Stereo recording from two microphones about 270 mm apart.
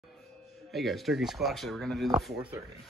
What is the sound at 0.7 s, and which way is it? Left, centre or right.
Speech, centre.